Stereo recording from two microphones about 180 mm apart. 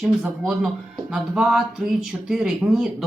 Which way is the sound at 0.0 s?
5° right (ahead or behind).